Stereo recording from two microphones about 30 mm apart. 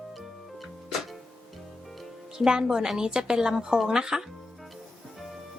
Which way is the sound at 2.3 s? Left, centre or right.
Right.